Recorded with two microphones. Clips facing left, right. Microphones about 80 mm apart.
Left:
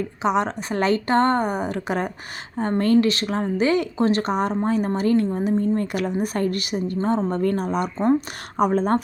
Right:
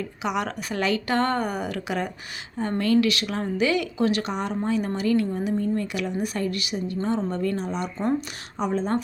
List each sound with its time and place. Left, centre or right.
0.0 s a woman's voice: left